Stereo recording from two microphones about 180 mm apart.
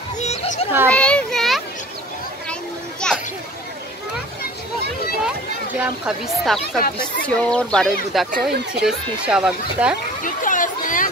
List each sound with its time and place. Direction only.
0.2 s children playing: 40° left (ahead or behind)
0.8 s children playing: 5° left (ahead or behind)
3.0 s children playing: 5° left (ahead or behind)
5.2 s speech: 5° right (ahead or behind)
8.3 s speech: 60° right (ahead or behind)
8.8 s speech: 5° right (ahead or behind)
10.2 s a sound: 45° left (ahead or behind)